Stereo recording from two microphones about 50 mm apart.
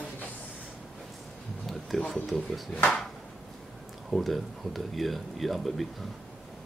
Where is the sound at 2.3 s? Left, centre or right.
Left.